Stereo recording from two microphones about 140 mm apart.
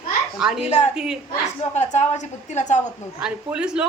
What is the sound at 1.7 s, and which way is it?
A woman's voice, 55° left (ahead or behind).